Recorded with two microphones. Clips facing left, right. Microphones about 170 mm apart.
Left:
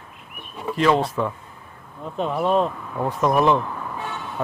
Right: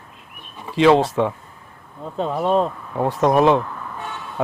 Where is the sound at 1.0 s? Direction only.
75° right (ahead or behind).